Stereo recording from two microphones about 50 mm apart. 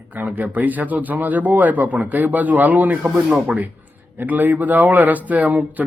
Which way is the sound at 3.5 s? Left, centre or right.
Right.